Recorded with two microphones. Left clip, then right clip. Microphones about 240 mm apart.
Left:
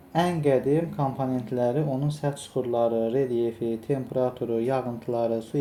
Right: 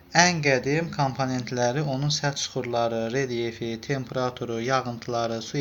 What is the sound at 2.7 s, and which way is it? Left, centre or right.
Speech, right.